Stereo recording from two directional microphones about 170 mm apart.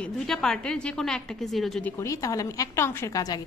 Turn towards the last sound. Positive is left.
turn(degrees=20)  # may be behind; listen again after turning